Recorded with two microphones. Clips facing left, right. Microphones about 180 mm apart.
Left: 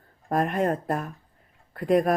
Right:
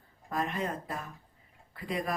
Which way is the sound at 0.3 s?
50° left (ahead or behind).